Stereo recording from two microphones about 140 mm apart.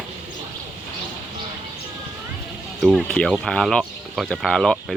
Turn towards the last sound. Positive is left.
turn(degrees=5)  # may be behind; listen again after turning